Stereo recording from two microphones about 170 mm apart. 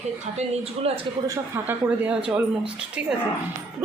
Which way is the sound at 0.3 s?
40° right (ahead or behind).